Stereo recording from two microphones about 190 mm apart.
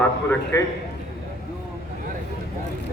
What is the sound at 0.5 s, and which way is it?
Speech, 15° left (ahead or behind).